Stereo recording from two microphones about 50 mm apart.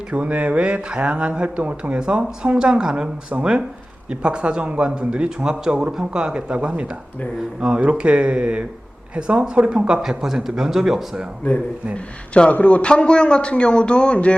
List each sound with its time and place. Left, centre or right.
0.1 s speech: right
11.9 s a man's voice: left